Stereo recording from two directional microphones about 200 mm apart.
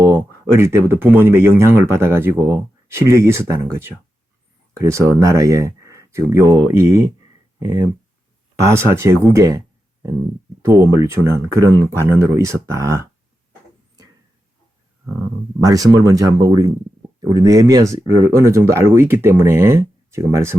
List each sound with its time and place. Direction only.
0.4 s speech: 10° right (ahead or behind)
10.9 s speech: 15° right (ahead or behind)
15.6 s speech: 20° right (ahead or behind)